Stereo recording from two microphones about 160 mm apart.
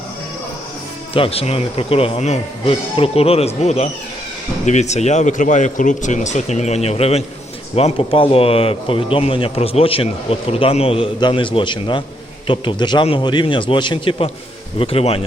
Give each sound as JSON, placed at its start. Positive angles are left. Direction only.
{"t": 1.1, "sound": "a man's voice", "side_deg": 35}